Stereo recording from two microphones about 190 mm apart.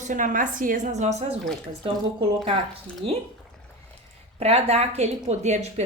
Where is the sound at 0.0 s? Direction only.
45° right (ahead or behind).